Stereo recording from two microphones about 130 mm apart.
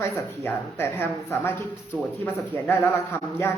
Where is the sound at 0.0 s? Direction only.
20° left (ahead or behind).